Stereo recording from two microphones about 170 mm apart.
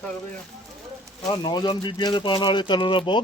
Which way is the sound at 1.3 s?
25° left (ahead or behind).